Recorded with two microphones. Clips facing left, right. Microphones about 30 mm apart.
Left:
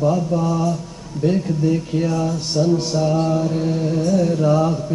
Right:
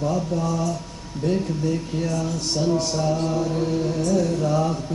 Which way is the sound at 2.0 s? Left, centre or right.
Centre.